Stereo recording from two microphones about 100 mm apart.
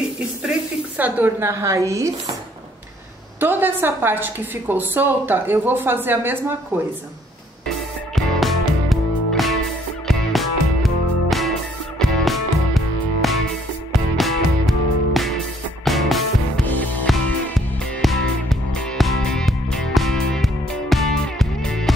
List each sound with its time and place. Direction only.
0.4 s a woman's voice: 15° right (ahead or behind); by 2.1 s 30° right (ahead or behind)
3.3 s a woman's voice: 20° right (ahead or behind)
8.1 s music: centre (ahead or behind)